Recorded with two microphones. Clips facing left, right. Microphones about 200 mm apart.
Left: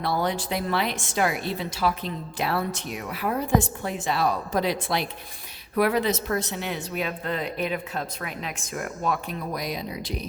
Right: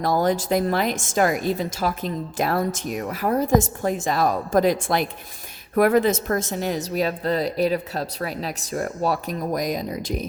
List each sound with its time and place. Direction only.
0.0 s a woman's voice: 45° right (ahead or behind)